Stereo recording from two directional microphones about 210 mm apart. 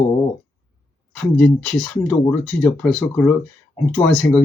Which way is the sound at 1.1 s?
5° left (ahead or behind).